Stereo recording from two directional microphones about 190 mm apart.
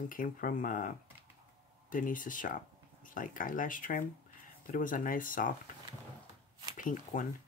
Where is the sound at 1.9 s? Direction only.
45° left (ahead or behind).